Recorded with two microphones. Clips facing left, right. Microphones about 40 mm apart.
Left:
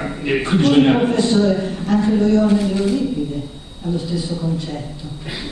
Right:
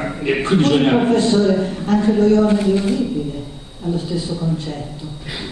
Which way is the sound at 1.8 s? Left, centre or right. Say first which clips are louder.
Right 1 dB; right.